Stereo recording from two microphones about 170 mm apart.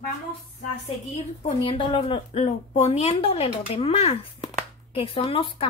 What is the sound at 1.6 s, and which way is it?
A woman's voice, 30° left (ahead or behind).